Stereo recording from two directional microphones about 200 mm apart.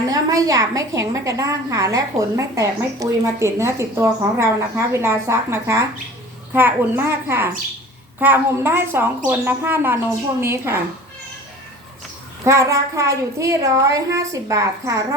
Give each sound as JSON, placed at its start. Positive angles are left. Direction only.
{"t": 0.1, "sound": "a woman's voice", "side_deg": -15}
{"t": 12.5, "sound": "a woman's voice", "side_deg": -15}